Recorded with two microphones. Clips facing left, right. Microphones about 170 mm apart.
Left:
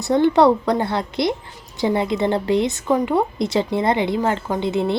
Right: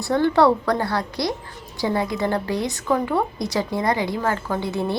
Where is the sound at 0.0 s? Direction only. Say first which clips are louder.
Left 3 dB; 20° left (ahead or behind).